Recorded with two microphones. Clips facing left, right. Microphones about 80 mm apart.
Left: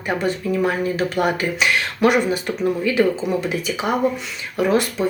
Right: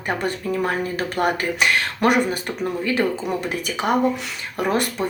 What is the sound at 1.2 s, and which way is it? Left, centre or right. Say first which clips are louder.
Speech: right 3 dB; right.